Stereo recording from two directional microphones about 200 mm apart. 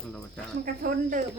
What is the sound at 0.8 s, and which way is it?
Speech, 40° right (ahead or behind).